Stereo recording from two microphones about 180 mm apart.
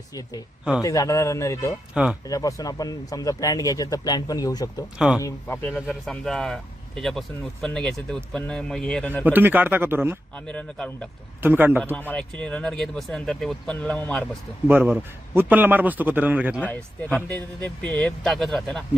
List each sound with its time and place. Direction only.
0.8 s speech: 20° left (ahead or behind)
1.9 s speech: 5° right (ahead or behind)
2.2 s speech: 20° left (ahead or behind)
4.9 s speech: 5° right (ahead or behind)
5.2 s speech: 10° left (ahead or behind)
5.8 s speech: centre (ahead or behind)
9.2 s a man's voice: 10° right (ahead or behind)
10.3 s speech: 5° left (ahead or behind)
11.4 s a man's voice: 10° right (ahead or behind)
11.9 s speech: 5° left (ahead or behind)
14.7 s a man's voice: 10° right (ahead or behind)
16.6 s speech: 5° left (ahead or behind)